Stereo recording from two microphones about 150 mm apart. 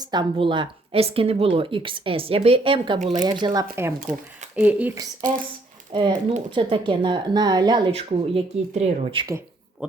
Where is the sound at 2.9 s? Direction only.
55° right (ahead or behind).